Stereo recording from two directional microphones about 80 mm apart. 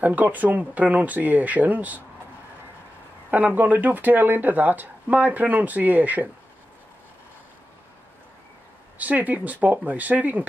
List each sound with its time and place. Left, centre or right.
0.0 s speech: centre
3.3 s speech: right
8.9 s speech: centre